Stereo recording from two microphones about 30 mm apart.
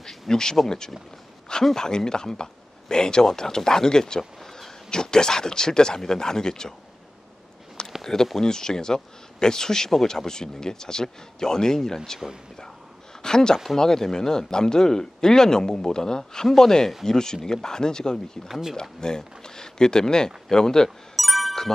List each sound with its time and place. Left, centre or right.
0.0 s a sound: centre
1.7 s speech: centre
4.2 s a sound: centre
4.9 s speech: left
8.0 s speech: centre
13.2 s speech: left
21.2 s music: centre